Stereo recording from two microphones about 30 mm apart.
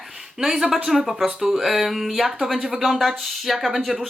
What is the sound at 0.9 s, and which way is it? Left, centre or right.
Speech, centre.